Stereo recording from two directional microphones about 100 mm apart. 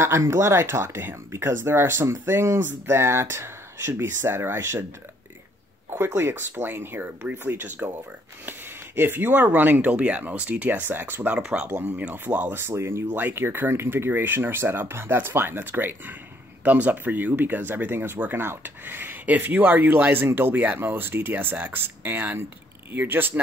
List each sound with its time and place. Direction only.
0.0 s speech: 30° right (ahead or behind)
5.9 s speech: 25° right (ahead or behind)
11.3 s speech: 10° right (ahead or behind)